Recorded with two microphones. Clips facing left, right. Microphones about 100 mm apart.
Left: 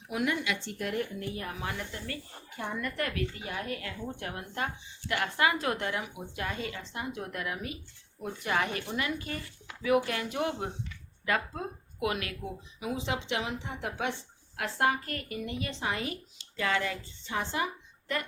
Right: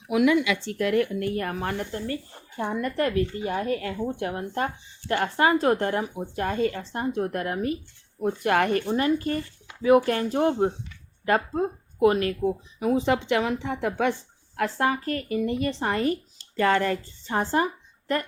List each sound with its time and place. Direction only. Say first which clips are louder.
0.1 s speech: right 10 dB; 90° right; by 7.8 s 40° right (ahead or behind)
8.2 s speech: right 8 dB; 55° right (ahead or behind)
8.9 s speech: right 10 dB; 40° right (ahead or behind); by 14.1 s 55° right (ahead or behind)
14.1 s speech: right 8 dB; 35° right (ahead or behind)